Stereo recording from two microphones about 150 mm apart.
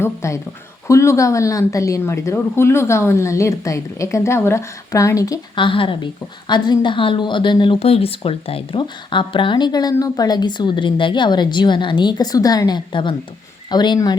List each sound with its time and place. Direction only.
0.0 s a woman's voice: 20° left (ahead or behind)
5.6 s a woman's voice: 35° left (ahead or behind)